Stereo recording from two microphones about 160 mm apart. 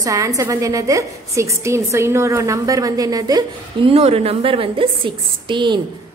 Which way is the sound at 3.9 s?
40° right (ahead or behind).